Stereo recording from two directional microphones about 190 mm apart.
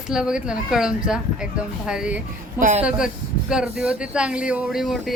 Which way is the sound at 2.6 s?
40° right (ahead or behind).